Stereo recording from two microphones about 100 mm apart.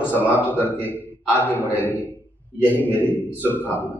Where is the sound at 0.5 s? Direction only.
20° left (ahead or behind).